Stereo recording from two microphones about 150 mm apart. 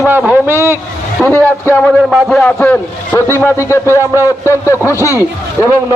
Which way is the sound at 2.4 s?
10° left (ahead or behind).